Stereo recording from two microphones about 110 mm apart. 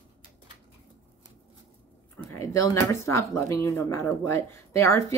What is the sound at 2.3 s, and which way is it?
Speech, 30° left (ahead or behind).